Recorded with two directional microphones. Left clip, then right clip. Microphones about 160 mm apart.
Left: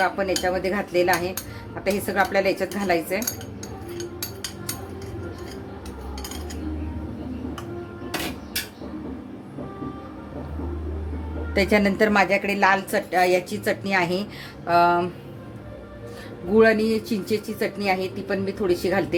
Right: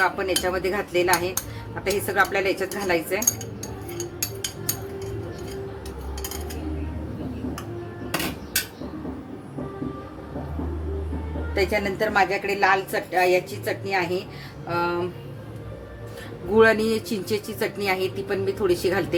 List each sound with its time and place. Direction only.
0.0 s a woman's voice: 20° left (ahead or behind)
11.5 s a woman's voice: 55° left (ahead or behind)
16.6 s a woman's voice: 20° left (ahead or behind)